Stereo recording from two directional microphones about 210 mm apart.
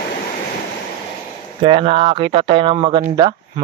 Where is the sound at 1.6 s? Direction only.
25° right (ahead or behind).